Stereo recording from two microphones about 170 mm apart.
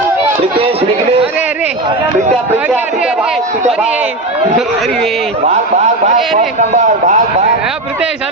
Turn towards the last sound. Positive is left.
turn(degrees=-45)  # may be behind; listen again after turning